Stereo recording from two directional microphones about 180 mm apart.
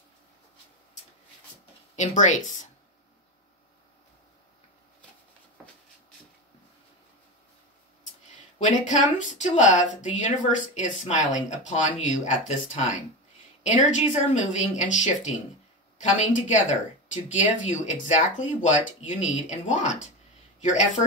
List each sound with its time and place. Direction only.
2.0 s speech: 40° left (ahead or behind)
8.5 s speech: 45° left (ahead or behind)